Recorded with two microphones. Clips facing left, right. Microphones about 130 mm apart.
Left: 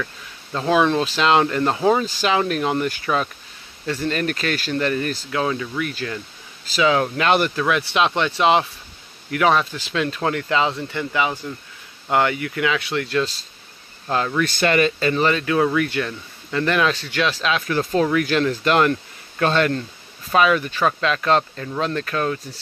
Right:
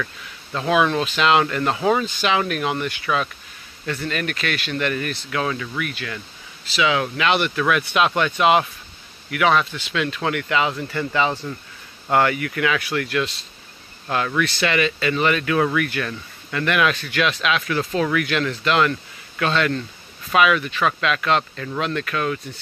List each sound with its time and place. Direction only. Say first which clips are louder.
0.6 s speech: left 1 dB; 25° left (ahead or behind)
5.3 s speech: left 1 dB; 20° left (ahead or behind)
6.6 s speech: left 2 dB; 40° left (ahead or behind)
7.5 s speech: even; 25° left (ahead or behind)
11.0 s speech: right 2 dB; 10° left (ahead or behind); by 13.5 s 35° left (ahead or behind)
14.4 s speech: left 4 dB; 45° left (ahead or behind)